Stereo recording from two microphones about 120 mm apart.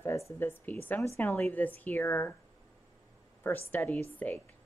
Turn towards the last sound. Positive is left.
turn(degrees=15)  # may be behind; listen again after turning